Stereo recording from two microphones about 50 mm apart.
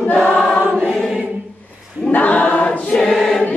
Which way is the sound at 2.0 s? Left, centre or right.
Left.